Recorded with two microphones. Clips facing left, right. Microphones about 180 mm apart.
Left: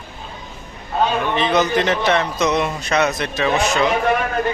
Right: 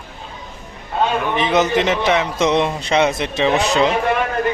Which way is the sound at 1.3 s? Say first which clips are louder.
Right 2 dB; 20° right (ahead or behind).